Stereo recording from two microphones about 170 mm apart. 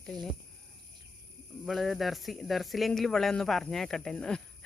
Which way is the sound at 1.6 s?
Centre (ahead or behind).